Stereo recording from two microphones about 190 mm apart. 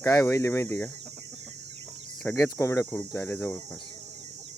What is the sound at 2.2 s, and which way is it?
Speech, 15° left (ahead or behind).